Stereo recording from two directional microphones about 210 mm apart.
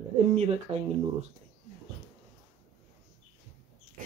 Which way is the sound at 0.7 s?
25° right (ahead or behind).